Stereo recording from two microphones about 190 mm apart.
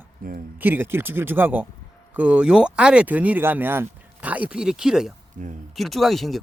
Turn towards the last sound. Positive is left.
turn(degrees=0)  # may be behind; listen again after turning